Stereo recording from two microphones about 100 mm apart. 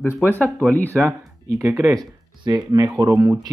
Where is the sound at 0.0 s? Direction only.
20° left (ahead or behind).